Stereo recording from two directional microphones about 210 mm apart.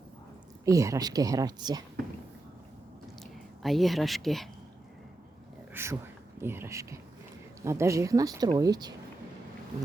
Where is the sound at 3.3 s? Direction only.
Centre (ahead or behind).